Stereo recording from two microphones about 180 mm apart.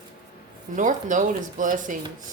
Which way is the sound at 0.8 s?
45° right (ahead or behind).